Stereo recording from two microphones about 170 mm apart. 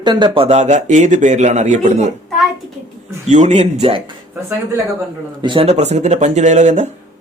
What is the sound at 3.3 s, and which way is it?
Speech, 45° right (ahead or behind).